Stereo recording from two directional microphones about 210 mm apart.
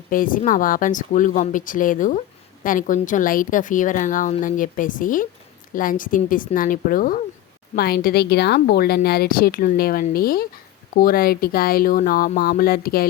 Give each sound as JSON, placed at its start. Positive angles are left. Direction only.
{"t": 0.1, "sound": "a woman's voice", "side_deg": 40}